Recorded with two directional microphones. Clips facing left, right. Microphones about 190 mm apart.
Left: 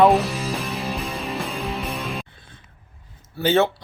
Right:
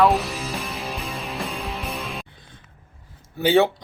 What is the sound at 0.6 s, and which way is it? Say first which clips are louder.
Music: left 3 dB; centre (ahead or behind).